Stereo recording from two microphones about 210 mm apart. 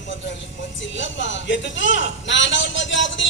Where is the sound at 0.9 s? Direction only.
60° left (ahead or behind).